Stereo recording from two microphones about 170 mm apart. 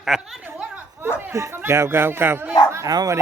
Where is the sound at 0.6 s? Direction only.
5° right (ahead or behind).